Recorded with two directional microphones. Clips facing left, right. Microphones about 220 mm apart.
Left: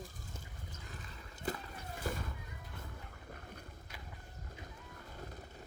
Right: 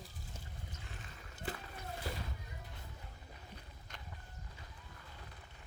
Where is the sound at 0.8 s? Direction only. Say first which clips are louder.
Left 2 dB; 40° left (ahead or behind).